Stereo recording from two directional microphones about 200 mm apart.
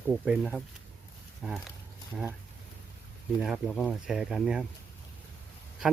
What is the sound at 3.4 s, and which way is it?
Speech, centre (ahead or behind).